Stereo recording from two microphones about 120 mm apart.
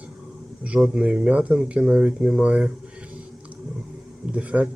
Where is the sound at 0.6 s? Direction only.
5° right (ahead or behind).